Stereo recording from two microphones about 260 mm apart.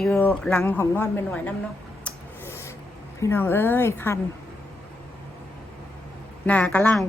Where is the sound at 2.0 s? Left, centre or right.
Centre.